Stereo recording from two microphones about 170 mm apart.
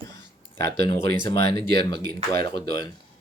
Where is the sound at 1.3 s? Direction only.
75° right (ahead or behind).